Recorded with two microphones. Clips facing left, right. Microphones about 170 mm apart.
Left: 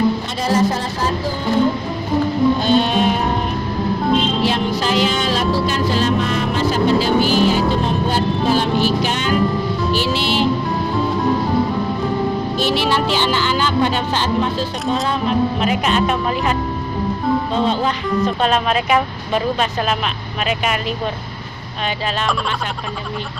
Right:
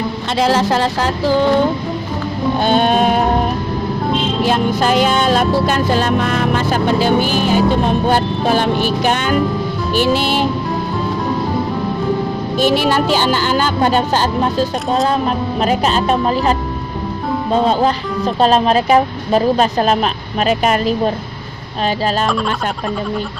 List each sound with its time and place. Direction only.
0.3 s music: 90° right
2.6 s sheep: 55° right (ahead or behind)
4.4 s music: 50° right (ahead or behind)
12.5 s music: 50° right (ahead or behind)
15.6 s speech: 35° right (ahead or behind)
18.3 s speech: 35° right (ahead or behind)